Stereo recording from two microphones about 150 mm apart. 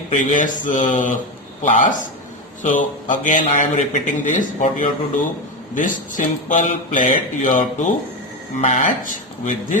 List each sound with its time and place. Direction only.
0.1 s speech: 55° left (ahead or behind)
5.7 s speech: 60° left (ahead or behind)